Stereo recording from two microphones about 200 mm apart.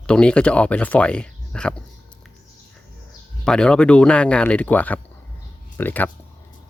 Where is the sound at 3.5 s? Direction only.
5° left (ahead or behind).